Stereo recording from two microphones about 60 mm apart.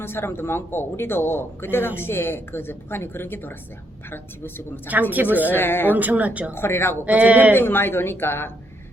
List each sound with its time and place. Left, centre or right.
0.0 s speech: left
4.9 s speech: right
5.5 s speech: left
5.9 s speech: right
6.5 s speech: left
7.0 s speech: right
7.5 s speech: left